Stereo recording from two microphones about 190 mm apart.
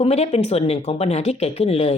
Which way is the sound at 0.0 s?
35° left (ahead or behind).